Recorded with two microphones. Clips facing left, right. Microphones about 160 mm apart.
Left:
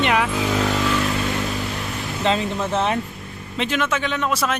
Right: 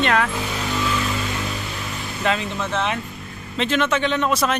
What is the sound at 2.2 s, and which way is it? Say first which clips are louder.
Speech: left 2 dB; 30° left (ahead or behind).